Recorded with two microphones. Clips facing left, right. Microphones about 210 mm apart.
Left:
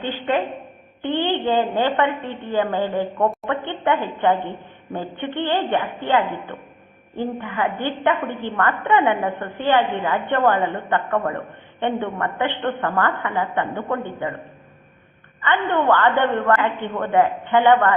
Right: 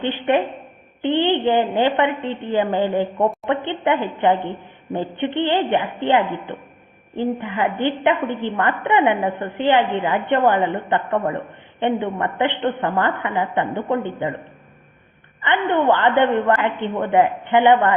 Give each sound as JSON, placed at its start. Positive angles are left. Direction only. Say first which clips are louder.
{"t": 1.0, "sound": "a woman's voice", "louder": "right 3 dB", "side_deg": -20}
{"t": 15.4, "sound": "a woman's voice", "louder": "right 2 dB", "side_deg": -15}